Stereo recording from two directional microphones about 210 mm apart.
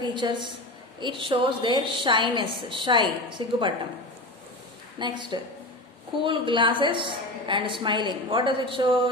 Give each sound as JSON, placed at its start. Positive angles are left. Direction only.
{"t": 0.0, "sound": "a woman's voice", "side_deg": -20}
{"t": 4.9, "sound": "a woman's voice", "side_deg": -20}